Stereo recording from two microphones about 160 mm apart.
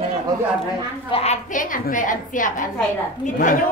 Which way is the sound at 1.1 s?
40° left (ahead or behind).